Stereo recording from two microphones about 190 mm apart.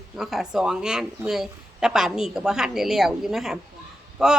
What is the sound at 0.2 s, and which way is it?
A woman's voice, centre (ahead or behind).